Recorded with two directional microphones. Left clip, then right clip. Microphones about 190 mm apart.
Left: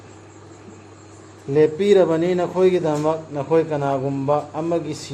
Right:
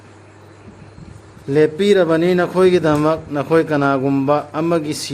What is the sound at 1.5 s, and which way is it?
A man's voice, 30° right (ahead or behind).